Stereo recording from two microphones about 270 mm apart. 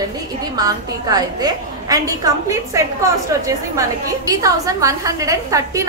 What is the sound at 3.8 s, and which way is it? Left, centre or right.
A woman's voice, centre.